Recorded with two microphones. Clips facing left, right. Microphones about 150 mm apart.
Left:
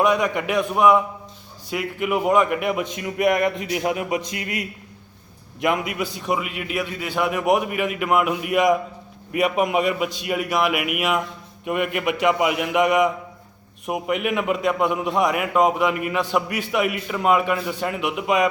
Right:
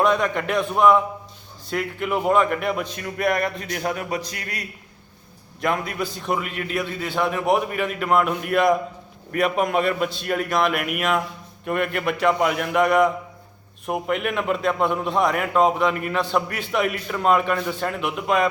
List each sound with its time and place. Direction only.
0.0 s a man's voice: 10° left (ahead or behind)